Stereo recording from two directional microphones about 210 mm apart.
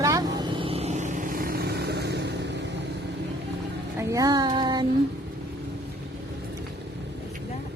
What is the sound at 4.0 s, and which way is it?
Music, 15° right (ahead or behind).